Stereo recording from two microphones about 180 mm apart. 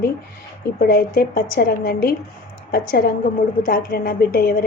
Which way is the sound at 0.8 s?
55° left (ahead or behind).